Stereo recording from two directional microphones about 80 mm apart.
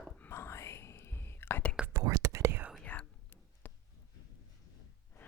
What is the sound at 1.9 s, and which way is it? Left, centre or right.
Whispering, right.